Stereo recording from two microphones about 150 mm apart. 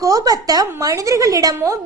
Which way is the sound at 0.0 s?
25° right (ahead or behind).